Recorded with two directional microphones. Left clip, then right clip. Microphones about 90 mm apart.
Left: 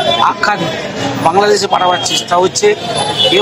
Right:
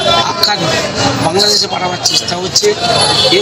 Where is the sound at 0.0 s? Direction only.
25° left (ahead or behind).